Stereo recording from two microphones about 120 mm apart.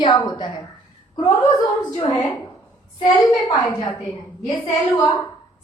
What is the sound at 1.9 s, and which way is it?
Speech, 35° left (ahead or behind).